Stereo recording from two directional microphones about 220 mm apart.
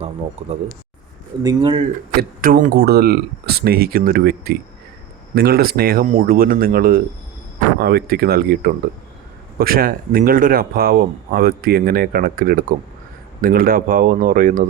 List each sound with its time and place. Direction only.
0.0 s speech: 30° right (ahead or behind)
2.4 s speech: 40° right (ahead or behind)